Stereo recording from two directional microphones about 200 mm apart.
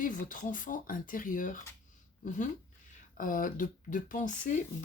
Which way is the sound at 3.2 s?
40° left (ahead or behind).